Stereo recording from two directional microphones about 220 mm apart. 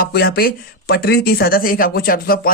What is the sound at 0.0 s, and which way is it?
Speech, 45° left (ahead or behind).